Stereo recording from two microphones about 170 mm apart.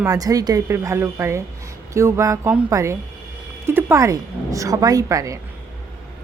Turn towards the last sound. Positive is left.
turn(degrees=-20)  # may be behind; listen again after turning